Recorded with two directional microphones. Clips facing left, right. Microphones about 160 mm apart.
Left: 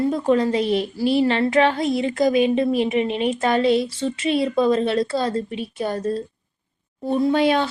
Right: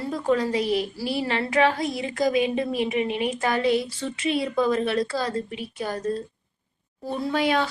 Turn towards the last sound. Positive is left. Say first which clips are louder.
# left 5 dB
turn(degrees=25)  # may be behind; listen again after turning